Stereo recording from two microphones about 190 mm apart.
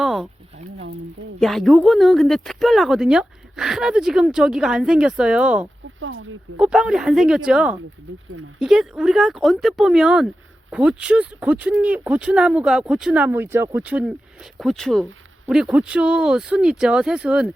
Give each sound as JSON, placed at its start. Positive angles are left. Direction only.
{"t": 0.0, "sound": "a sound", "side_deg": 0}
{"t": 1.4, "sound": "speech", "side_deg": 0}
{"t": 6.0, "sound": "speech", "side_deg": -90}
{"t": 6.6, "sound": "speech", "side_deg": -5}